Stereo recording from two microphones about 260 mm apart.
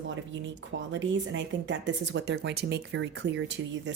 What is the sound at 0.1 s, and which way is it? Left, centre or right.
Speech, right.